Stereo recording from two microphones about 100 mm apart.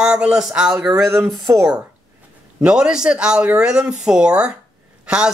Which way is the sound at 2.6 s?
10° right (ahead or behind).